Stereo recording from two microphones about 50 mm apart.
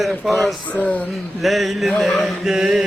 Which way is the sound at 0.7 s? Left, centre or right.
Left.